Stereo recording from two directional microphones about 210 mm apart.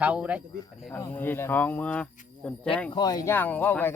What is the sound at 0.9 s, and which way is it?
Speech, 10° left (ahead or behind).